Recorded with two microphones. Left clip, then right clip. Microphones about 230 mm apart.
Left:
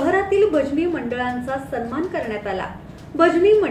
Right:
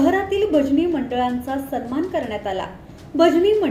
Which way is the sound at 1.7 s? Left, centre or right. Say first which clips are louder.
Right 2 dB; right.